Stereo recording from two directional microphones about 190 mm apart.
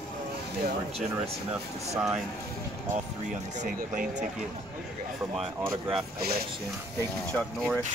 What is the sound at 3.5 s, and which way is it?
Speech, 40° right (ahead or behind).